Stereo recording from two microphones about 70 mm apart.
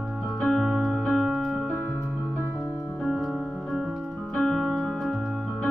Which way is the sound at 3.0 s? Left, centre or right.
Centre.